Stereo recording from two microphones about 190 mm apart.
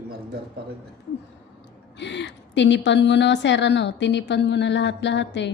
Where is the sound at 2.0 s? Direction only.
65° left (ahead or behind).